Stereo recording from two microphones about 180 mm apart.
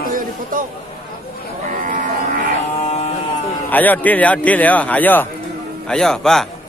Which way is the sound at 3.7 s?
10° left (ahead or behind).